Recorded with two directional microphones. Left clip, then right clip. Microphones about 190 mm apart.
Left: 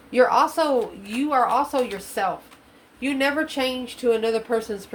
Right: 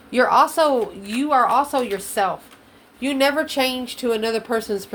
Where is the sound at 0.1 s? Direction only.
40° right (ahead or behind).